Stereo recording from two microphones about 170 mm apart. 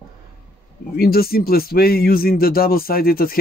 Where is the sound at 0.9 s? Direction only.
65° left (ahead or behind).